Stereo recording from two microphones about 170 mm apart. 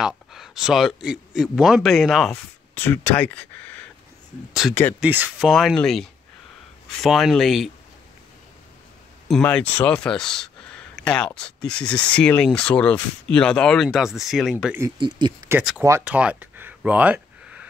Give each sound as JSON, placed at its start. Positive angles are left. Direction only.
{"t": 0.0, "sound": "speech", "side_deg": -5}
{"t": 2.8, "sound": "speech", "side_deg": 10}
{"t": 5.0, "sound": "speech", "side_deg": -10}
{"t": 9.3, "sound": "speech", "side_deg": 5}
{"t": 15.0, "sound": "speech", "side_deg": -25}
{"t": 15.8, "sound": "a sound", "side_deg": -15}